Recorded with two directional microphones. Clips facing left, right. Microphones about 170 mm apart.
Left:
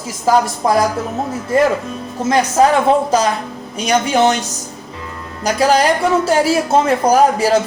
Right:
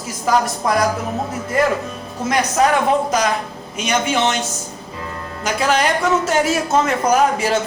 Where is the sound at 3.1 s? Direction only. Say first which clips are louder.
Left 3 dB; 30° left (ahead or behind).